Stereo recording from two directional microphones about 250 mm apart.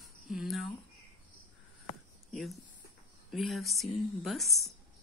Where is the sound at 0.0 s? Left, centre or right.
Centre.